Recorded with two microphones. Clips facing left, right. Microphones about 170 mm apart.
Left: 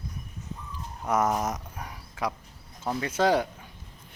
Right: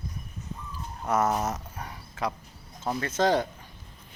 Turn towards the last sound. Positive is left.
turn(degrees=10)  # may be behind; listen again after turning